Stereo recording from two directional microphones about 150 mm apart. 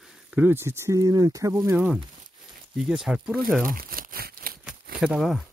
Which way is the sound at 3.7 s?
70° right (ahead or behind).